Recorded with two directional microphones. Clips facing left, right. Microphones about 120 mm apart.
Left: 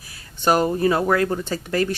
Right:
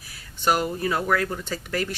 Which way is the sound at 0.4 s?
35° left (ahead or behind).